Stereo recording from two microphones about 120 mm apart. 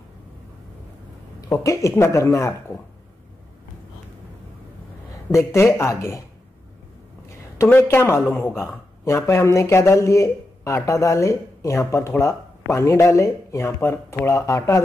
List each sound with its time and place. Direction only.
1.5 s speech: 25° left (ahead or behind)
5.3 s speech: 25° left (ahead or behind)
7.5 s speech: 20° left (ahead or behind)